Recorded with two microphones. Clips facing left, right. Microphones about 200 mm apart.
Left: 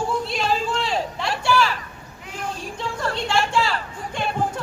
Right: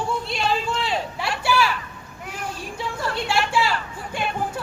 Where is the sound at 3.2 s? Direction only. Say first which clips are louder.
Left 1 dB; 5° right (ahead or behind).